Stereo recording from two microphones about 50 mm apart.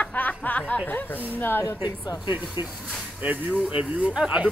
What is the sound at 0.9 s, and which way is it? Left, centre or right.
Speech, left.